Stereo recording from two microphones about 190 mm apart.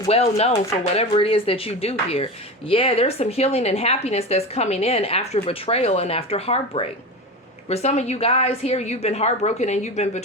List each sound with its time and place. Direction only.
0.1 s a woman's voice: 30° left (ahead or behind)